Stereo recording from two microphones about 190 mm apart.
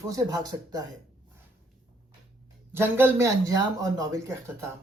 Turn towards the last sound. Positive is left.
turn(degrees=-15)  # may be behind; listen again after turning